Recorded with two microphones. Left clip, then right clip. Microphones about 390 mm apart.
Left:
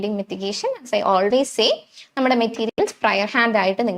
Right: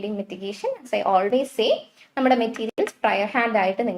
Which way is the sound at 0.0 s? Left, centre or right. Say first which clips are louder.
Left 5 dB; left.